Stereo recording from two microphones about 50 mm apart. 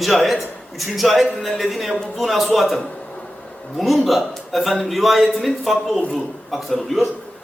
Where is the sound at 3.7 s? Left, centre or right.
Centre.